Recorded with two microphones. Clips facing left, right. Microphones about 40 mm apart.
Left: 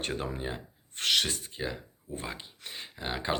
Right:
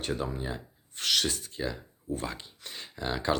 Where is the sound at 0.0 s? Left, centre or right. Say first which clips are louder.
Right 1 dB; left.